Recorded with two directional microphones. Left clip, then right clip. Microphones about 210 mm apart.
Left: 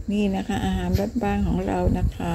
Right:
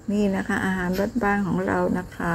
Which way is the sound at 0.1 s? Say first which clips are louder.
Right 2 dB; 10° left (ahead or behind).